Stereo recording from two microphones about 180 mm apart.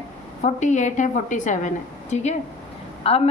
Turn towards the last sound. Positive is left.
turn(degrees=30)  # may be behind; listen again after turning